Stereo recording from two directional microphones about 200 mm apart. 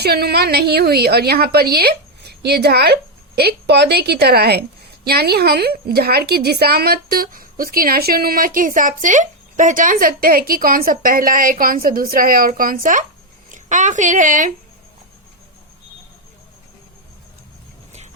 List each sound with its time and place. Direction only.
0.0 s a woman's voice: 55° right (ahead or behind)